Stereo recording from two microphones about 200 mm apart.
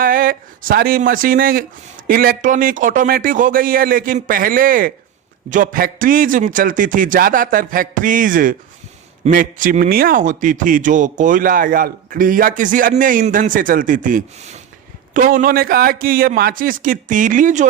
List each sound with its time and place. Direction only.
0.0 s speech: 45° right (ahead or behind)